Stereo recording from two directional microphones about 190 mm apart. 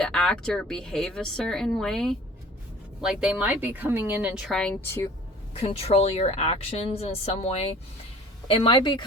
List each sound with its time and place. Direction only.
0.0 s a woman's voice: 5° left (ahead or behind)
5.5 s speech: 30° left (ahead or behind)